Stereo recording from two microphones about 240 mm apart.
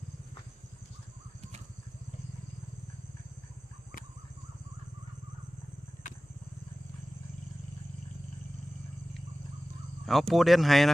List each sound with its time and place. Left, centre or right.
10.1 s speech: centre